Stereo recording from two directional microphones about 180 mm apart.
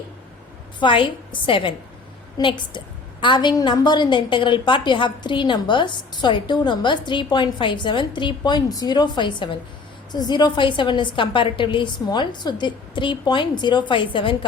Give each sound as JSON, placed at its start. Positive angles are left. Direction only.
{"t": 0.8, "sound": "a woman's voice", "side_deg": 25}